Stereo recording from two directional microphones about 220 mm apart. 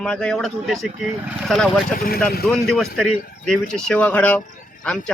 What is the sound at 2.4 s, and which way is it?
A man's voice, centre (ahead or behind).